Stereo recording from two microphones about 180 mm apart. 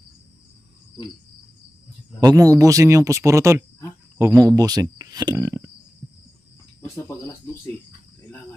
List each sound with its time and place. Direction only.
2.1 s speech: 20° right (ahead or behind)